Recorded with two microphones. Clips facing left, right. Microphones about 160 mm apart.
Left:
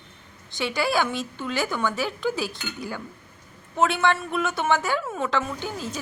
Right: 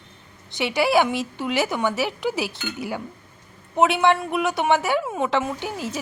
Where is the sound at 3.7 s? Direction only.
20° right (ahead or behind).